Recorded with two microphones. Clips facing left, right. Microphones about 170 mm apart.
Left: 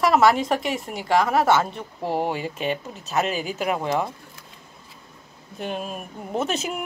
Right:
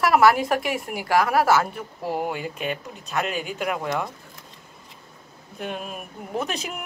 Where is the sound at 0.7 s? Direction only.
25° left (ahead or behind).